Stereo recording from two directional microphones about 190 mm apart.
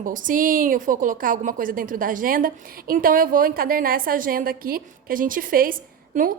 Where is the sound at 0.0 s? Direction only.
45° right (ahead or behind).